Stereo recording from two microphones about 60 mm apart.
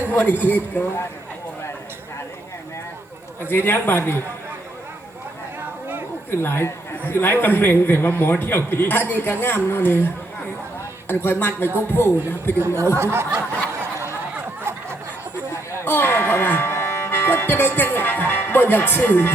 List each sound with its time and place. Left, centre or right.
0.1 s a man's voice: left
3.5 s a man's voice: left
6.4 s a man's voice: left
12.5 s speech: right
13.0 s a sound: right
15.8 s speech: left